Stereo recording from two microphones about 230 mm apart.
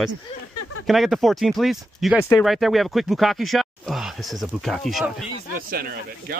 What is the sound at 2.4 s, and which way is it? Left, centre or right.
Speech, centre.